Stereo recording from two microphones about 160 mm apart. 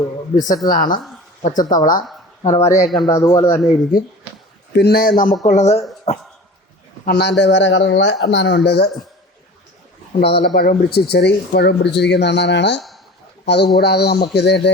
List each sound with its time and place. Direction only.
0.3 s a woman's voice: 55° left (ahead or behind)
2.5 s speech: 20° left (ahead or behind)
3.9 s a woman's voice: 60° left (ahead or behind)
4.7 s a man's voice: 85° left; by 5.3 s 60° left (ahead or behind)
5.5 s speech: 45° left (ahead or behind)
7.1 s speech: 90° left
10.2 s speech: 90° left